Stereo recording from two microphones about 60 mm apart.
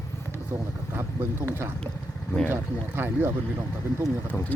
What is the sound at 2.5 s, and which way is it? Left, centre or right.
Speech, right.